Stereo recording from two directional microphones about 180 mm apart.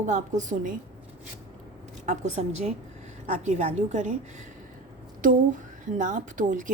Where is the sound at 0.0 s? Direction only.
45° right (ahead or behind).